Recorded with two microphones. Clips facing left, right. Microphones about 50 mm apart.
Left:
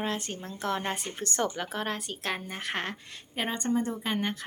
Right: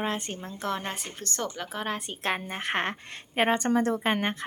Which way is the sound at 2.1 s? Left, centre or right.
Right.